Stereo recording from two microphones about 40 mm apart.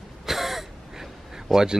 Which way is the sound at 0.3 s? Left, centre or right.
Centre.